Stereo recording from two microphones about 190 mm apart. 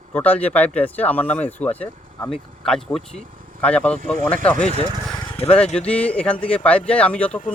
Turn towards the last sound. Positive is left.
turn(degrees=5)  # may be behind; listen again after turning